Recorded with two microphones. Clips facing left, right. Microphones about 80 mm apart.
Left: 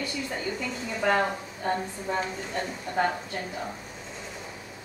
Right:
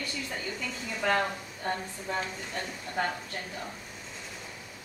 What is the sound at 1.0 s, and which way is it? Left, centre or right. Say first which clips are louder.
Speech: left 3 dB; centre.